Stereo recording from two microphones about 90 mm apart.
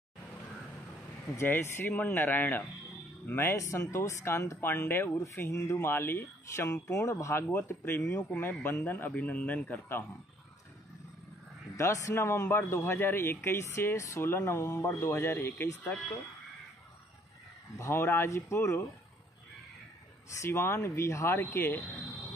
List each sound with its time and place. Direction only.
1.3 s a man's voice: 25° left (ahead or behind)
3.3 s a man's voice: 35° left (ahead or behind)
11.7 s a man's voice: 35° left (ahead or behind)
17.7 s speech: 30° left (ahead or behind)
20.3 s a man's voice: 30° left (ahead or behind)